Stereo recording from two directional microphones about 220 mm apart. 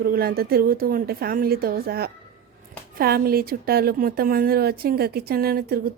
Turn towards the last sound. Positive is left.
turn(degrees=-45)  # may be behind; listen again after turning